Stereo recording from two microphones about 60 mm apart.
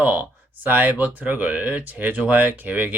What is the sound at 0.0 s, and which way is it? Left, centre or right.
Speech, right.